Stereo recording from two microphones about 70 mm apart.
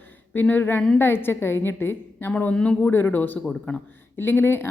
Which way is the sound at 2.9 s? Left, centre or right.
Left.